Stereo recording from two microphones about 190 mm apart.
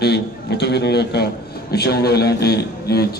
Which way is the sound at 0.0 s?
60° left (ahead or behind).